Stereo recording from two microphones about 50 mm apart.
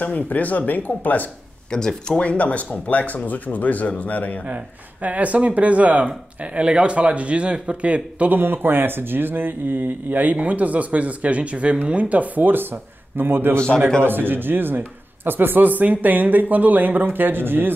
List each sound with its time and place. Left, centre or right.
0.0 s speech: left
1.7 s speech: centre
2.1 s speech: left
5.0 s speech: right
8.4 s a man's voice: right